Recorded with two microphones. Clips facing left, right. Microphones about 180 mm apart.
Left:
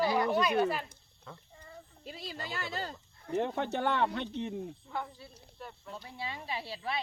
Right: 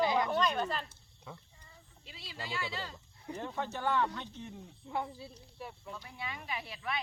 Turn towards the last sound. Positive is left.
turn(degrees=30)  # may be behind; listen again after turning